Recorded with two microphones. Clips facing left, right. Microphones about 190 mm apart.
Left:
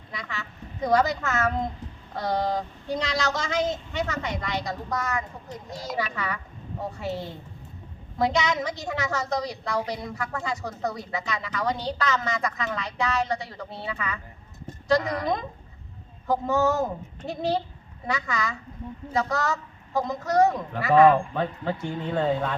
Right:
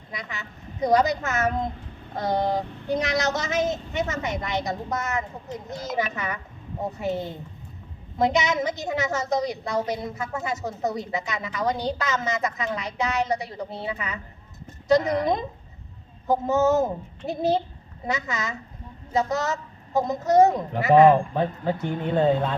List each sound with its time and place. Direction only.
0.1 s a woman's voice: 20° right (ahead or behind)